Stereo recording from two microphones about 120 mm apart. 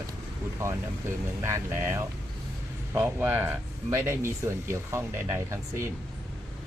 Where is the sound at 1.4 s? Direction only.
25° right (ahead or behind).